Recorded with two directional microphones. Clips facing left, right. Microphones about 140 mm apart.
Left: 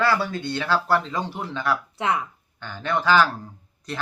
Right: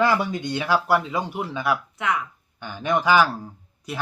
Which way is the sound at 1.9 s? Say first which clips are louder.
Left 1 dB; 30° left (ahead or behind).